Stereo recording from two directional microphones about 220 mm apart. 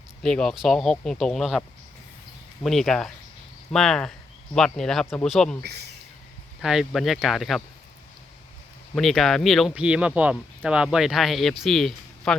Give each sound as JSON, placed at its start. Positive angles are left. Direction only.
{"t": 0.2, "sound": "speech", "side_deg": 0}
{"t": 2.6, "sound": "speech", "side_deg": 0}
{"t": 5.6, "sound": "speech", "side_deg": -50}
{"t": 6.6, "sound": "speech", "side_deg": 0}
{"t": 9.0, "sound": "speech", "side_deg": 0}